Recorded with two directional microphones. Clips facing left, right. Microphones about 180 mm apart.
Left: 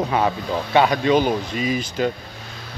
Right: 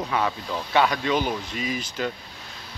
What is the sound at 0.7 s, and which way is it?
Speech, 20° left (ahead or behind).